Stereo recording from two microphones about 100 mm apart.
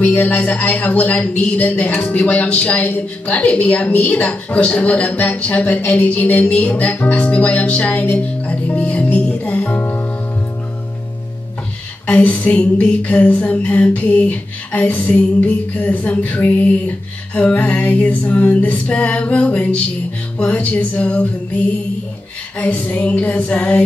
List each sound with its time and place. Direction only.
0.0 s speech: 15° left (ahead or behind)
12.1 s speech: 15° left (ahead or behind)
22.6 s speech: 15° left (ahead or behind)